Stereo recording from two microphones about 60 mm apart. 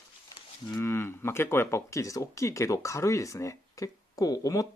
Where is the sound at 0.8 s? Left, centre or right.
Left.